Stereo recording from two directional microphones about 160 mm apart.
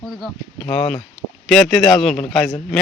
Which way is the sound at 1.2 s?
25° right (ahead or behind).